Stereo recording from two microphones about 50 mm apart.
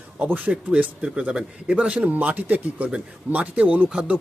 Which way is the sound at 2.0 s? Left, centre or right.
Right.